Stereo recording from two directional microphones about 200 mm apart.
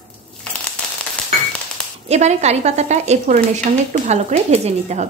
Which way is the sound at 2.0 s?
35° right (ahead or behind).